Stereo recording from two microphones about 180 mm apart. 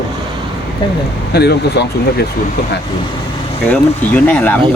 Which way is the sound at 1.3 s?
65° left (ahead or behind).